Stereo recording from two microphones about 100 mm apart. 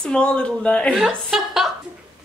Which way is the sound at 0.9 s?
Centre (ahead or behind).